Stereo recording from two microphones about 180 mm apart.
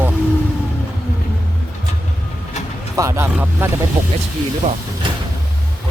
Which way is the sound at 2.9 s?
15° right (ahead or behind).